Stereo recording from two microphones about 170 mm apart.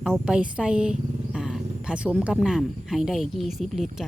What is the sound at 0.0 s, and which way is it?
Speech, 5° right (ahead or behind).